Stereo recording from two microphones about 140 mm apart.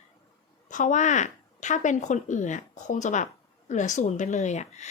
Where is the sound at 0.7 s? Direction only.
65° left (ahead or behind).